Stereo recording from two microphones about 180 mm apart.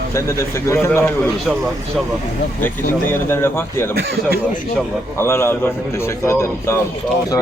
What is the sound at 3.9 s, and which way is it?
Speech, 60° right (ahead or behind).